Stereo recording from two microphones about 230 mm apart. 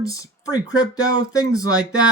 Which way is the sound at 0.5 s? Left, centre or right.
Centre.